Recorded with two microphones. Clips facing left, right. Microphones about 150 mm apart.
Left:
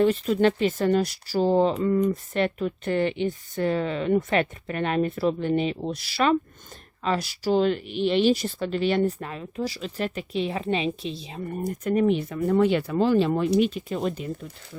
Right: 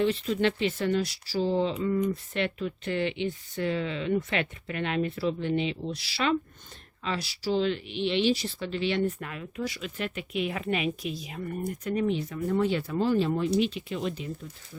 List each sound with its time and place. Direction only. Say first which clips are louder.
0.0 s speech: left 5 dB; 45° left (ahead or behind)